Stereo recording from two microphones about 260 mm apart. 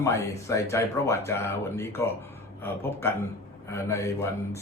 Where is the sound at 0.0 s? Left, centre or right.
Centre.